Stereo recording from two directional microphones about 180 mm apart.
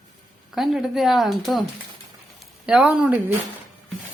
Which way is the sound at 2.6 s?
5° right (ahead or behind).